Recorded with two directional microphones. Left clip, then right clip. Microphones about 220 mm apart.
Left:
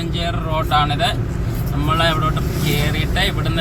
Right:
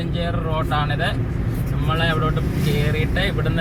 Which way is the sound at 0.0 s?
25° left (ahead or behind).